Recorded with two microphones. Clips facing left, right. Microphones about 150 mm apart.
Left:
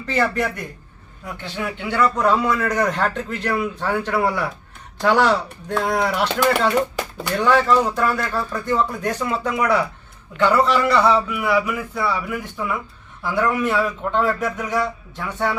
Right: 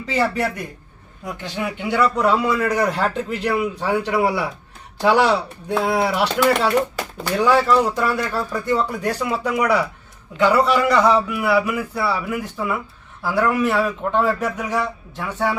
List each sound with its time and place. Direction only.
0.1 s a man's voice: 10° right (ahead or behind)